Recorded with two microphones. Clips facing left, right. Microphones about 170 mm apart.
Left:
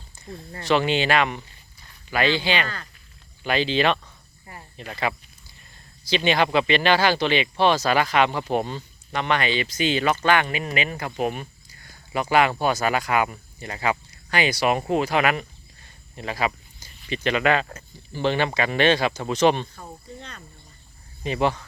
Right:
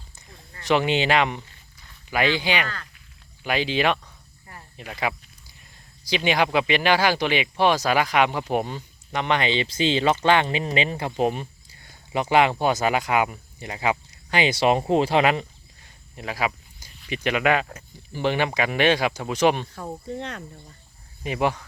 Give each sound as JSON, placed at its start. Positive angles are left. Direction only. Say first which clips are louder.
{"t": 0.6, "sound": "speech", "louder": "even", "side_deg": -15}
{"t": 15.8, "sound": "a sound", "louder": "left 1 dB", "side_deg": -10}
{"t": 17.2, "sound": "speech", "louder": "even", "side_deg": -10}
{"t": 20.1, "sound": "speech", "louder": "right 9 dB", "side_deg": -85}
{"t": 21.2, "sound": "speech", "louder": "left 1 dB", "side_deg": -10}